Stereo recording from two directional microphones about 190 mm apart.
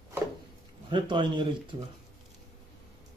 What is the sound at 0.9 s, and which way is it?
Speech, 25° right (ahead or behind).